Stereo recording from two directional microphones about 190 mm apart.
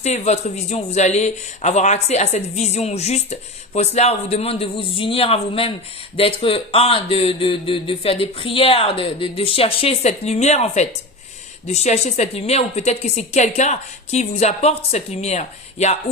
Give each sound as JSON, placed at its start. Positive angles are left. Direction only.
{"t": 0.0, "sound": "speech", "side_deg": 35}